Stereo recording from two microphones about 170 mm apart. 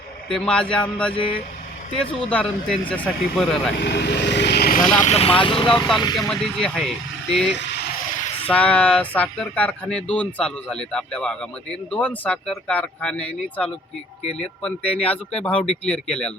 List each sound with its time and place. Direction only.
0.3 s speech: 5° left (ahead or behind)
1.1 s speech: 30° left (ahead or behind)
2.0 s speech: 5° left (ahead or behind)
3.8 s speech: 75° left (ahead or behind); by 5.7 s 30° left (ahead or behind)
6.1 s speech: 5° left (ahead or behind)
14.3 s speech: 35° left (ahead or behind)
14.6 s speech: 10° left (ahead or behind)